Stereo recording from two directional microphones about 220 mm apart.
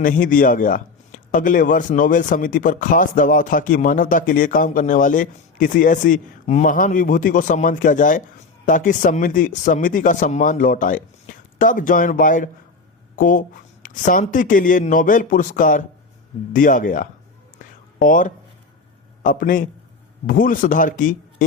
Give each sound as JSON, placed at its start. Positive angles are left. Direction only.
{"t": 0.0, "sound": "speech", "side_deg": 40}